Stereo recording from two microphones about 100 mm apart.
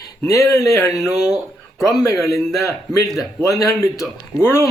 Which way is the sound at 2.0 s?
30° left (ahead or behind).